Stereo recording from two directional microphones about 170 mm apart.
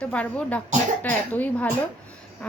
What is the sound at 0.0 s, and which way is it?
Speech, 5° left (ahead or behind).